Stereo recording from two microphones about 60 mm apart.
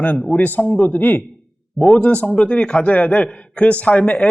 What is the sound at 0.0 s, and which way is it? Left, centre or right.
Speech, left.